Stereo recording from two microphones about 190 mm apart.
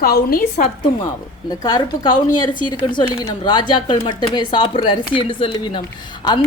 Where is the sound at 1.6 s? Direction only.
20° left (ahead or behind).